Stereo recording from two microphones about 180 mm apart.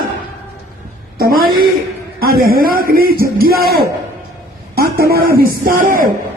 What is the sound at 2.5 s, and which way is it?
A man's voice, 55° right (ahead or behind).